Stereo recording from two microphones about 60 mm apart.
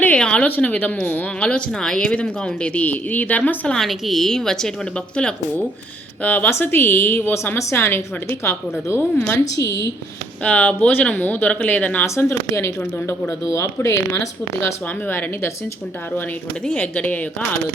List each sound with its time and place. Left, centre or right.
0.2 s a woman's voice: centre
3.8 s a woman's voice: centre
6.2 s speech: left
7.7 s speech: left
9.3 s speech: left
10.4 s speech: left
12.0 s speech: left
14.6 s speech: left
16.6 s speech: left